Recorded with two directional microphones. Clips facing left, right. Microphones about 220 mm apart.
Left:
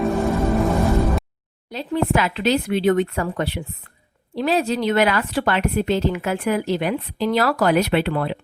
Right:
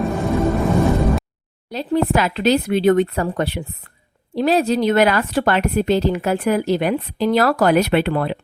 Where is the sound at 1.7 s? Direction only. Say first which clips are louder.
Right 3 dB; 40° right (ahead or behind).